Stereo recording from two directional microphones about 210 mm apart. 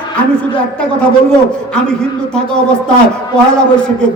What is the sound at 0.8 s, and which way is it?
A man's voice, 5° left (ahead or behind).